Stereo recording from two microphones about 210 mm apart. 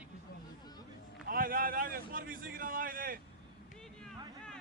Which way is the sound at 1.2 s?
45° right (ahead or behind).